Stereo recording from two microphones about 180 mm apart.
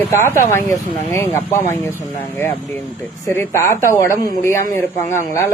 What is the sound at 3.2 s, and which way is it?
Speech, 15° left (ahead or behind).